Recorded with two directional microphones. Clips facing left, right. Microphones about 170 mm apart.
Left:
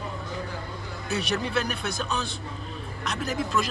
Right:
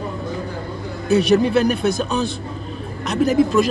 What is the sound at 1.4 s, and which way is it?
Speech, 15° right (ahead or behind).